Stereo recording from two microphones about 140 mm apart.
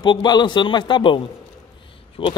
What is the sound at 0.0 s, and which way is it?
Speech, 30° left (ahead or behind).